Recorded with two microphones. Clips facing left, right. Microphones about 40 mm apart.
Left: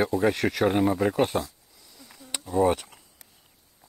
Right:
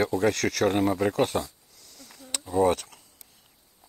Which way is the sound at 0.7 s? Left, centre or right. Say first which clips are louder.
Left 1 dB; centre.